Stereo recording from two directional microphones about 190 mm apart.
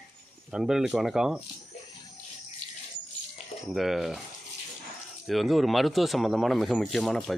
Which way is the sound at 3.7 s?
Centre (ahead or behind).